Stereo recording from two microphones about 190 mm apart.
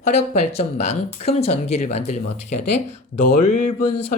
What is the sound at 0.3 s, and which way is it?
Speech, 35° left (ahead or behind).